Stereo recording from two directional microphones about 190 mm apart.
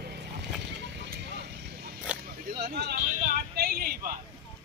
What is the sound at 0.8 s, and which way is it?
Vehicle, 65° right (ahead or behind).